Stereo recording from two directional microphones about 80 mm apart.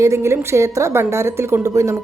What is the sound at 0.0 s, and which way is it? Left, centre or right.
A woman's voice, right.